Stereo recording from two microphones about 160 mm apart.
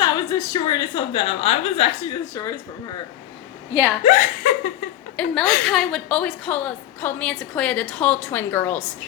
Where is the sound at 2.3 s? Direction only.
20° left (ahead or behind).